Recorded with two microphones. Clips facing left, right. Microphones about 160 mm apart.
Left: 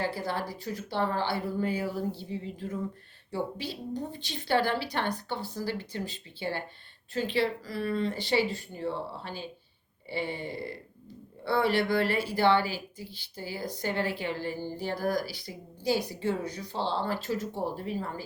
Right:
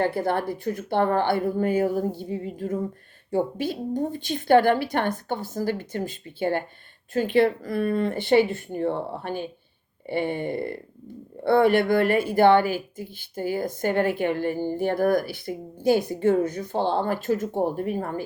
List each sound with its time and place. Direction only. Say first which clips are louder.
0.0 s speech: right 8 dB; 55° right (ahead or behind)